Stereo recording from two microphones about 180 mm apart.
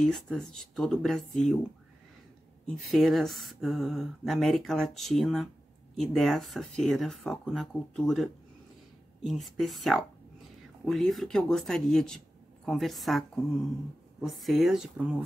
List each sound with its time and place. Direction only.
0.0 s speech: 5° left (ahead or behind)
2.8 s speech: centre (ahead or behind)